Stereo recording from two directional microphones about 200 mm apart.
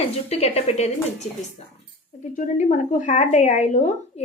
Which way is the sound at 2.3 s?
40° left (ahead or behind).